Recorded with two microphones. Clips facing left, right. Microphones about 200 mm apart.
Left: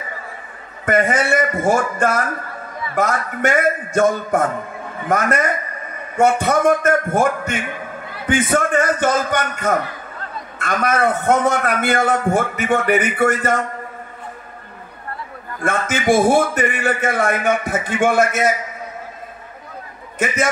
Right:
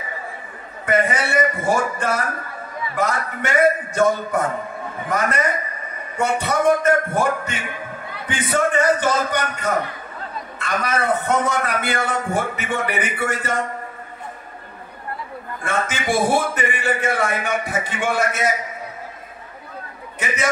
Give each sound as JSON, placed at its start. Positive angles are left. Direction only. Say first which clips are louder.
{"t": 0.8, "sound": "a man's voice", "louder": "left 3 dB", "side_deg": 45}
{"t": 15.6, "sound": "a man's voice", "louder": "left 5 dB", "side_deg": 45}